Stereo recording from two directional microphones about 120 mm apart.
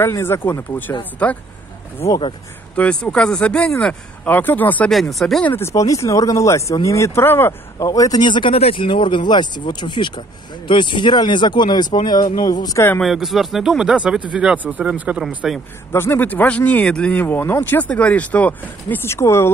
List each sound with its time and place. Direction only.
0.0 s speech: 20° left (ahead or behind)
2.7 s speech: 10° left (ahead or behind)
5.5 s speech: 20° left (ahead or behind); by 8.5 s 40° left (ahead or behind)
8.5 s speech: 50° left (ahead or behind); by 12.3 s 35° left (ahead or behind)
12.6 s speech: 20° left (ahead or behind)
13.0 s speech: centre (ahead or behind)
15.2 s speech: centre (ahead or behind)
15.9 s speech: 20° left (ahead or behind)